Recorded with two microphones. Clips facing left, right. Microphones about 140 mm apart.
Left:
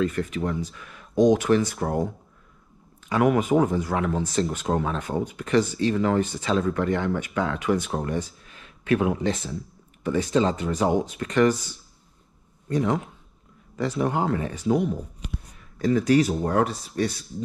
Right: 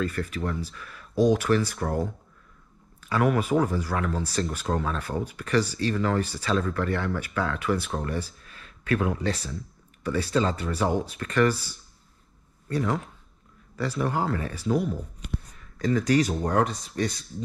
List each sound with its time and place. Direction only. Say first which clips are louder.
0.0 s speech: left 4 dB; 15° left (ahead or behind)
3.0 s speech: left 3 dB; 20° left (ahead or behind)
12.6 s speech: left 3 dB; 20° left (ahead or behind)
16.2 s speech: left 2 dB; 5° left (ahead or behind)